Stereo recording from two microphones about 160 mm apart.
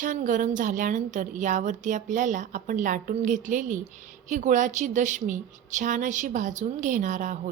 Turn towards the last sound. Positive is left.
turn(degrees=-50)  # may be behind; listen again after turning